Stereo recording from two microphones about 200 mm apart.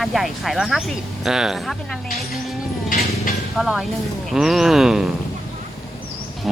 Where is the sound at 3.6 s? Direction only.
Centre (ahead or behind).